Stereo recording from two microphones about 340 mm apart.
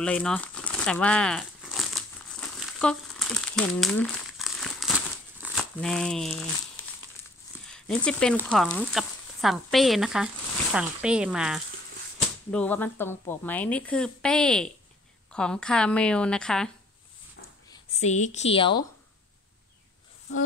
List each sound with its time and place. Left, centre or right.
0.0 s crumpling: centre
5.4 s speech: centre
7.6 s speech: centre
17.6 s a woman's voice: centre